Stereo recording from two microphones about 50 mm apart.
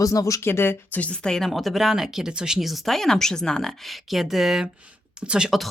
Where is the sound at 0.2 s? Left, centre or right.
Left.